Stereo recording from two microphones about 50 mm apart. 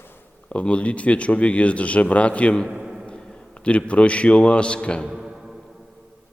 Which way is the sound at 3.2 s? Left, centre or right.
Centre.